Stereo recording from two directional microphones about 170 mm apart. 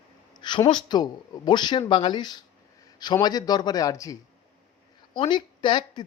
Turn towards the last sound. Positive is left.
turn(degrees=25)  # may be behind; listen again after turning